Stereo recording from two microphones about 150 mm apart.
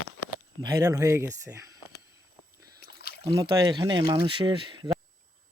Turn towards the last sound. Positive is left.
turn(degrees=-30)  # may be behind; listen again after turning